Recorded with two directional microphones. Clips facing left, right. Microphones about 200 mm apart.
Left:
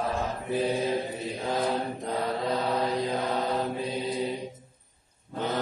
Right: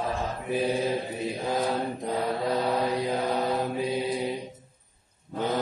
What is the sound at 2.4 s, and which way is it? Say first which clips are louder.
Mantra: right 2 dB; 15° right (ahead or behind).